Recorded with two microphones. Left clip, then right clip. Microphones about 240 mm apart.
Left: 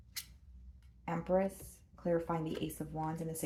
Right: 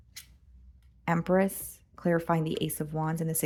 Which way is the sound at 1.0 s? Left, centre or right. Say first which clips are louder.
Right 7 dB; right.